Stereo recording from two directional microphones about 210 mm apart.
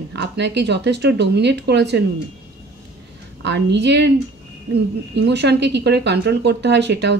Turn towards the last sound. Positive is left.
turn(degrees=-55)  # may be behind; listen again after turning